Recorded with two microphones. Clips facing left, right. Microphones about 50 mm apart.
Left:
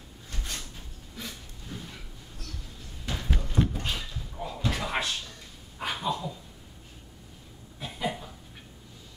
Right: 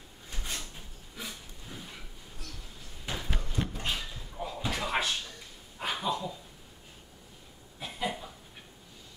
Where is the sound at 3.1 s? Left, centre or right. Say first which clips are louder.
Left 1 dB; centre.